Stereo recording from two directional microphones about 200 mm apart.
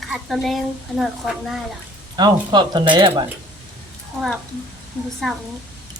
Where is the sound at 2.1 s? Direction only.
20° right (ahead or behind).